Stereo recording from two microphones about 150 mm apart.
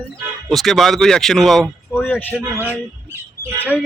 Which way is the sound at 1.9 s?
10° left (ahead or behind).